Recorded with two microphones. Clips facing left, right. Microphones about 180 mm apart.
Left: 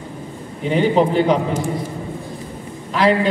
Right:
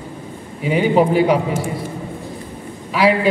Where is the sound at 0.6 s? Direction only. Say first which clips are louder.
Right 1 dB; 5° right (ahead or behind).